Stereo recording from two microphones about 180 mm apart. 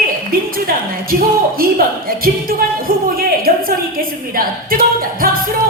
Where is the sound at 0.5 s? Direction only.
55° right (ahead or behind).